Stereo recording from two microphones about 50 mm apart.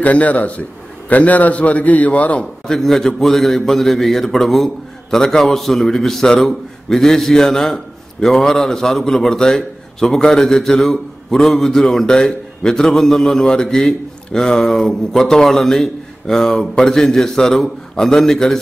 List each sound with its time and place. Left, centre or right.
0.0 s a man's voice: left
2.6 s a man's voice: centre